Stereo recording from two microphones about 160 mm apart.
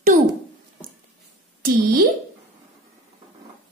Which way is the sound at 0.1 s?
55° right (ahead or behind).